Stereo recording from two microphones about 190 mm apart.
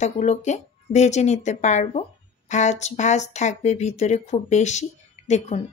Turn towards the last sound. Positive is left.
turn(degrees=35)  # may be behind; listen again after turning